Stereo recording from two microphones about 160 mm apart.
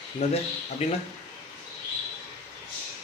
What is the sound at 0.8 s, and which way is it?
Speech, 40° left (ahead or behind).